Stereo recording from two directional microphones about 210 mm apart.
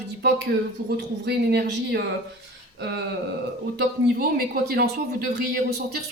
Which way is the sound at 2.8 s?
55° right (ahead or behind).